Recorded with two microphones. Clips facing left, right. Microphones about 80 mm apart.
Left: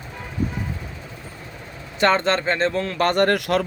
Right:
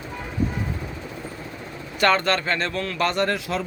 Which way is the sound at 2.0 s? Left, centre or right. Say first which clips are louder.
Left 1 dB; left.